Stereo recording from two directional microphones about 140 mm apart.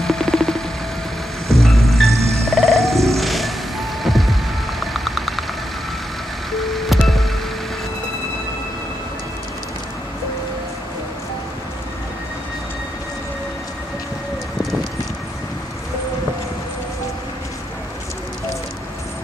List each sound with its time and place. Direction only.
0.0 s music: 5° left (ahead or behind)
2.1 s music: 50° right (ahead or behind)
2.5 s music: centre (ahead or behind)
6.6 s music: centre (ahead or behind)